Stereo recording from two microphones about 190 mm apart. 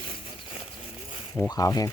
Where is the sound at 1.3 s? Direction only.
15° left (ahead or behind).